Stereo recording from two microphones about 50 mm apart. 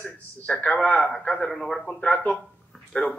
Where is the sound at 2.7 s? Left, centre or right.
Centre.